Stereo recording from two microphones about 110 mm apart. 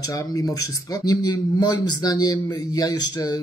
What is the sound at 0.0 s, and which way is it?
A man's voice, 35° left (ahead or behind).